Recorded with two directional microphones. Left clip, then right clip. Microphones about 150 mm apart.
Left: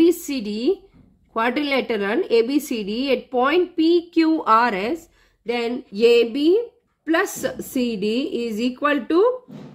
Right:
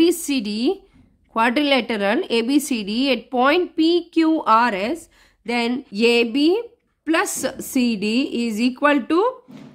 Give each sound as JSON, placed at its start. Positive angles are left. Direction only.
{"t": 0.0, "sound": "a sound", "side_deg": -35}
{"t": 1.3, "sound": "speech", "side_deg": -25}
{"t": 5.5, "sound": "a woman's voice", "side_deg": -35}